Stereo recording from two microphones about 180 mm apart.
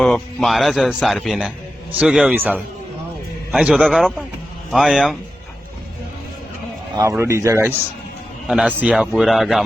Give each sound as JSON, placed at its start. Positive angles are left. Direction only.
{"t": 0.0, "sound": "a man's voice", "side_deg": 5}
{"t": 6.9, "sound": "a man's voice", "side_deg": -15}